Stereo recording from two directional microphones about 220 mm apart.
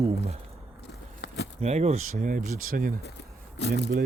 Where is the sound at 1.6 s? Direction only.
30° right (ahead or behind).